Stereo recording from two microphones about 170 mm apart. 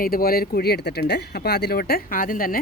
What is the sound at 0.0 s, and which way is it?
Speech, 60° left (ahead or behind).